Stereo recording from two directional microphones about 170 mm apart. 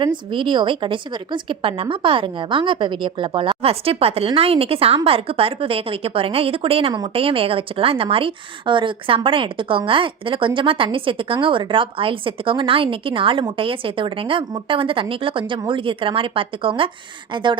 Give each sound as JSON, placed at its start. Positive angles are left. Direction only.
{"t": 0.0, "sound": "a woman's voice", "side_deg": -30}